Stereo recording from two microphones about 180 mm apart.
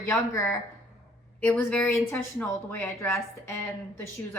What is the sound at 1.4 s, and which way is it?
Speech, 10° left (ahead or behind).